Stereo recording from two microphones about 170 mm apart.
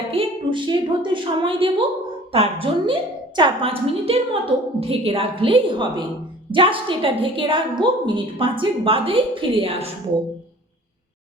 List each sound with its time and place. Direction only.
0.1 s a woman's voice: 30° right (ahead or behind)